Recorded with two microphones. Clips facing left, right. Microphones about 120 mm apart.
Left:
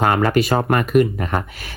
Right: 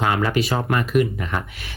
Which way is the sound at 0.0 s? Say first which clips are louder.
Left 4 dB; 45° left (ahead or behind).